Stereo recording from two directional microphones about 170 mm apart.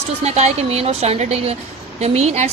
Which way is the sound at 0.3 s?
40° right (ahead or behind).